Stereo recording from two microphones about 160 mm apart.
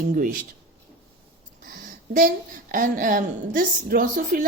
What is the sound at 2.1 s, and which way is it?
A woman's voice, 60° right (ahead or behind).